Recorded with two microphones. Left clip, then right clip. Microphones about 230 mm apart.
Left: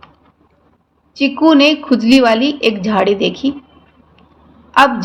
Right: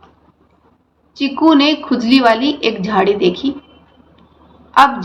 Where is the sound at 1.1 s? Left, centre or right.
Left.